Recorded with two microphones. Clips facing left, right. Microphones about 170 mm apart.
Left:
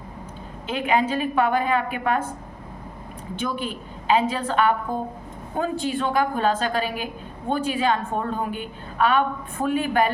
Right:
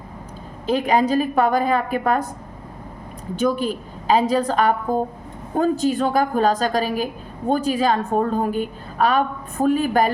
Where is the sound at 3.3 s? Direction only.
40° right (ahead or behind).